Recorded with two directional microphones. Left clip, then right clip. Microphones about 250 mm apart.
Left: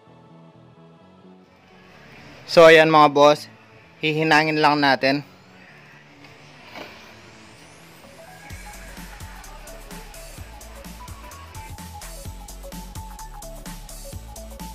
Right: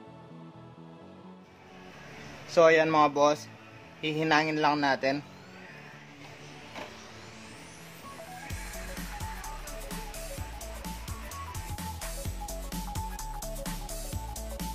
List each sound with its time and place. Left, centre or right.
2.5 s a man's voice: left
9.4 s music: centre